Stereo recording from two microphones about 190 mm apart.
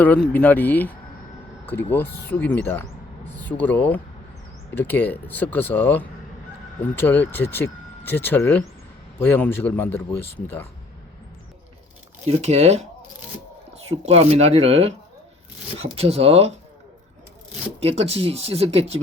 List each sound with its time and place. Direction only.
0.0 s speech: 10° left (ahead or behind)
12.3 s speech: 35° right (ahead or behind)
17.7 s speech: 30° right (ahead or behind)